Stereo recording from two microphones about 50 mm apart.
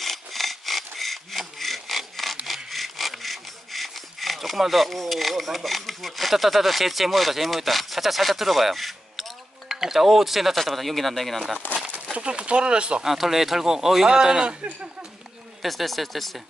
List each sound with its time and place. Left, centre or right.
0.0 s rub: centre
2.4 s sawing: centre
9.7 s speech: centre
11.7 s speech: right
13.0 s speech: centre; by 14.9 s right
15.6 s speech: centre